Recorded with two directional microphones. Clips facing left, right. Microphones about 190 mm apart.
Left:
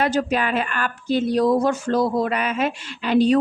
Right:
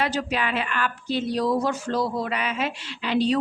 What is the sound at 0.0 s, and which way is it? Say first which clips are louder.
A woman's voice: left 5 dB; 45° left (ahead or behind).